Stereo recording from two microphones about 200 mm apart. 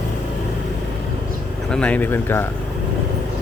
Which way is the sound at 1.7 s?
5° left (ahead or behind).